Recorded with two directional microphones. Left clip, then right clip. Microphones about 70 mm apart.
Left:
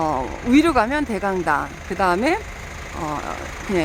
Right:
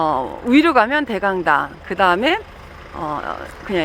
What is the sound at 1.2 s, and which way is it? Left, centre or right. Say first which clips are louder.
Speech: right 5 dB; right.